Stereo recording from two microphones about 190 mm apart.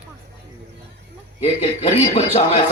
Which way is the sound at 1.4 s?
35° left (ahead or behind).